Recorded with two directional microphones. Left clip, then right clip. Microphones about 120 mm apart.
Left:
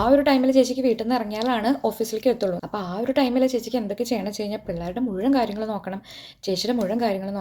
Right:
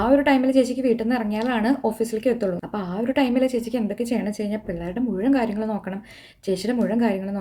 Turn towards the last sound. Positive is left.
turn(degrees=-25)  # may be behind; listen again after turning